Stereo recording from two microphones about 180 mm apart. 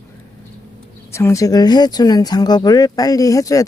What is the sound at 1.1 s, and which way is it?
Speech, 15° left (ahead or behind).